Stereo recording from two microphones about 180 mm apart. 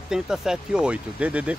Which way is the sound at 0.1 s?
5° right (ahead or behind).